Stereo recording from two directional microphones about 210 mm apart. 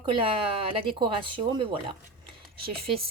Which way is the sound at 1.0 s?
25° right (ahead or behind).